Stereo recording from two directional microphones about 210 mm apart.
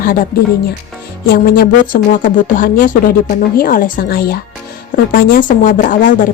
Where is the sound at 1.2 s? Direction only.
45° left (ahead or behind).